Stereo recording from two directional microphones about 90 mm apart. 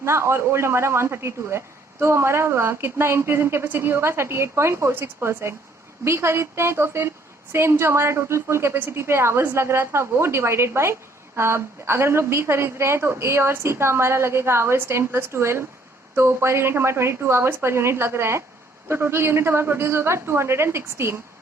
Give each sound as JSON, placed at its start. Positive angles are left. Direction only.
{"t": 0.0, "sound": "speech", "side_deg": -30}